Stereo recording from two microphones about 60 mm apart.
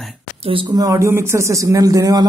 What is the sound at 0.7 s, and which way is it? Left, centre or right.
Speech, right.